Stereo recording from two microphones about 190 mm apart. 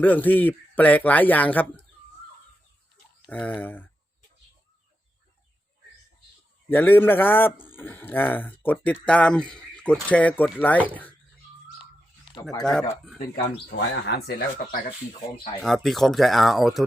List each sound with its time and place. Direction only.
0.0 s speech: 10° left (ahead or behind)
3.2 s speech: 10° left (ahead or behind)
6.7 s speech: 10° left (ahead or behind)
12.4 s speech: 20° left (ahead or behind)
13.7 s speech: 55° left (ahead or behind)
15.6 s speech: centre (ahead or behind)